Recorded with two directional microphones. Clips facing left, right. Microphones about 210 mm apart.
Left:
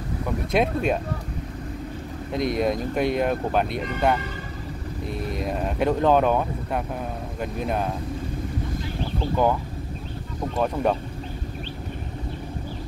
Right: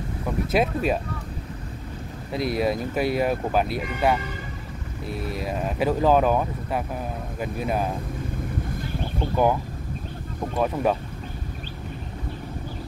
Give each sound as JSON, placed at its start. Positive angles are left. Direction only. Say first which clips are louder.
{"t": 0.5, "sound": "speech", "louder": "left 1 dB", "side_deg": -5}
{"t": 2.3, "sound": "speech", "louder": "left 1 dB", "side_deg": -5}
{"t": 10.6, "sound": "speech", "louder": "even", "side_deg": -5}